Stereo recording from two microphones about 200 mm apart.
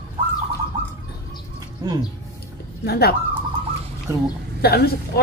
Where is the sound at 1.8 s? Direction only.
20° right (ahead or behind).